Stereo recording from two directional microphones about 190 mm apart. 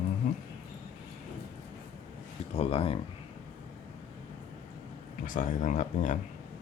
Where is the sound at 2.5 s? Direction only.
30° left (ahead or behind).